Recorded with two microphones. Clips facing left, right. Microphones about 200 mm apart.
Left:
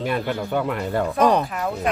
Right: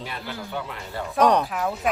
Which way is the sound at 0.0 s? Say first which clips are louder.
Left 10 dB; 55° left (ahead or behind).